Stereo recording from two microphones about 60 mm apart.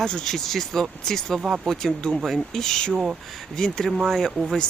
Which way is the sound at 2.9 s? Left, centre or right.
Centre.